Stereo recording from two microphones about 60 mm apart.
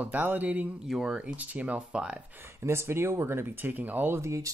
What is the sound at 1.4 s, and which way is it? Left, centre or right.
Speech, right.